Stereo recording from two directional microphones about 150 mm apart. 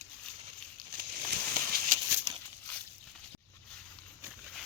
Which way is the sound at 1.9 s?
60° right (ahead or behind).